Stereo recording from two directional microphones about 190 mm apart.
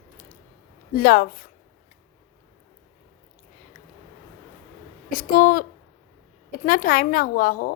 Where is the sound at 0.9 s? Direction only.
50° left (ahead or behind).